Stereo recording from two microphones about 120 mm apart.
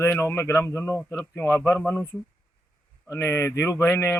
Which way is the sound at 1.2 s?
10° left (ahead or behind).